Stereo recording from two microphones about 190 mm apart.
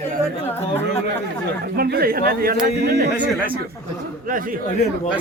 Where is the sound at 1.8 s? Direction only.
55° right (ahead or behind).